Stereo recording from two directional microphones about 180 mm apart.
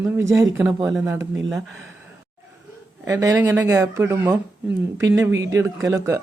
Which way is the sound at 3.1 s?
15° right (ahead or behind).